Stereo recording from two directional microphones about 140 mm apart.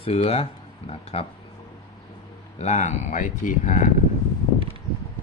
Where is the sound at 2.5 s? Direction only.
55° left (ahead or behind).